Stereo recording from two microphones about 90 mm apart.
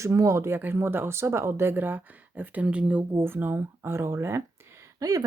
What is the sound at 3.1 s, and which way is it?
Speech, 25° right (ahead or behind).